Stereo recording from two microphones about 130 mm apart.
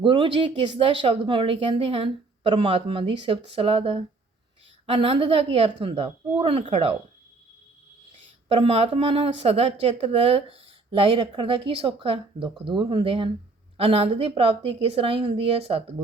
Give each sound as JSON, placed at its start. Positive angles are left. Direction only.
{"t": 0.0, "sound": "speech", "side_deg": -40}
{"t": 8.4, "sound": "speech", "side_deg": -45}